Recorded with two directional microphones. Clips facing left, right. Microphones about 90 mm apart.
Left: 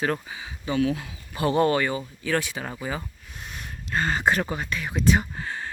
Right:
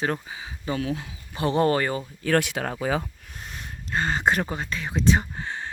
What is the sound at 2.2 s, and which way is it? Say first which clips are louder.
Speech: right 5 dB; 60° right (ahead or behind).